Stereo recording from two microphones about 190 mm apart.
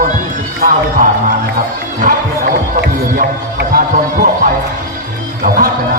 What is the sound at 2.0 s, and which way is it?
Run, 40° right (ahead or behind).